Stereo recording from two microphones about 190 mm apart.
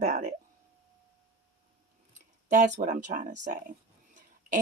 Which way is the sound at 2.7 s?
40° right (ahead or behind).